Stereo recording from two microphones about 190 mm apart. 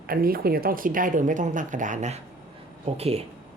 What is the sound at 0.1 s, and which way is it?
Speech, 50° right (ahead or behind).